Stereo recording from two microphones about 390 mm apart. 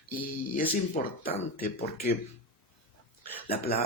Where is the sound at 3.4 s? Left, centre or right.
Left.